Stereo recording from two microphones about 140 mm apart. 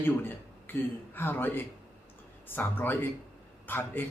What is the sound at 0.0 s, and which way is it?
A man's voice, 15° left (ahead or behind).